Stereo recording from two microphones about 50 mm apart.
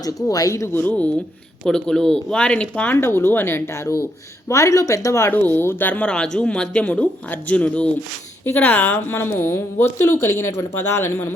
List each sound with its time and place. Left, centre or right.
0.4 s speech: left
0.7 s a woman's voice: left
1.6 s speech: centre
2.8 s speech: left
5.3 s speech: left
6.1 s a woman's voice: centre; by 10.7 s left
10.8 s a woman's voice: left